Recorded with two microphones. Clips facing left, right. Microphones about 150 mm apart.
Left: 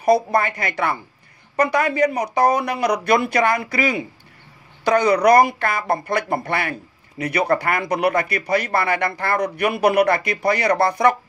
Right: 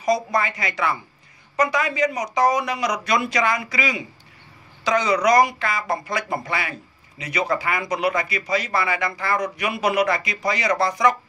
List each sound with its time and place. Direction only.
0.0 s speech: 60° left (ahead or behind)